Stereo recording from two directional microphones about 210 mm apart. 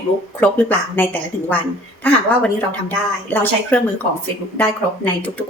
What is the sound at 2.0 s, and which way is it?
Speech, 10° left (ahead or behind).